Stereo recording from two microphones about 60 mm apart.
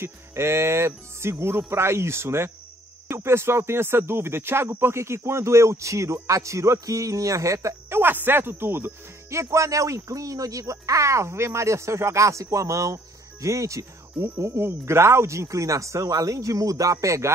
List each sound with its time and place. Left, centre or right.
0.0 s speech: right
7.9 s speech: right
9.3 s speech: right
14.4 s speech: right